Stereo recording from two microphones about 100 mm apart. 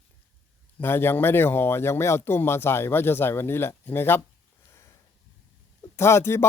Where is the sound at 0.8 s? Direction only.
25° left (ahead or behind).